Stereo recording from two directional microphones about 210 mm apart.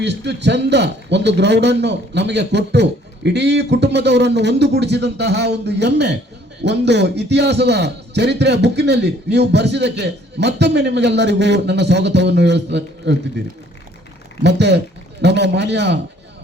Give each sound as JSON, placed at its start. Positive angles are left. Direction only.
{"t": 0.0, "sound": "a man's voice", "side_deg": -55}
{"t": 14.4, "sound": "a man's voice", "side_deg": -55}